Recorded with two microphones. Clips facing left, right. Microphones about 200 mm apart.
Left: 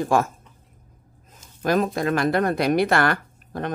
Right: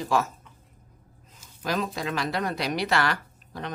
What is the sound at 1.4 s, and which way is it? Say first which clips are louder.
Speech: left 7 dB; 50° left (ahead or behind).